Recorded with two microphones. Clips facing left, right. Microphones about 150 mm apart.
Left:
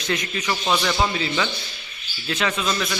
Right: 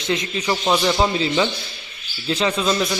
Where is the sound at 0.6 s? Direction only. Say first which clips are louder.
Right 4 dB; 20° right (ahead or behind).